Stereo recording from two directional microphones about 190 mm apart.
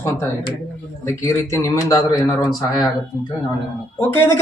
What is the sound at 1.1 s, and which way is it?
Speech, 15° left (ahead or behind).